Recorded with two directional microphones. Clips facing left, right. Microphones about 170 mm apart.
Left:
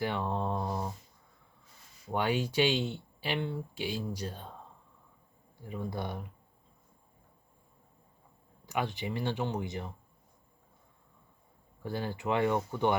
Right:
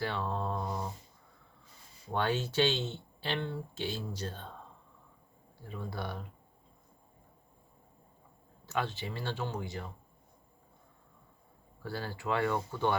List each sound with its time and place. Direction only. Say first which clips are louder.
0.0 s mantra: left 2 dB; 15° left (ahead or behind)
2.1 s speech: left 1 dB; 10° left (ahead or behind)
5.6 s speech: left 3 dB; 15° left (ahead or behind)
8.6 s speech: left 1 dB; 15° left (ahead or behind)
11.8 s speech: left 3 dB; 20° left (ahead or behind)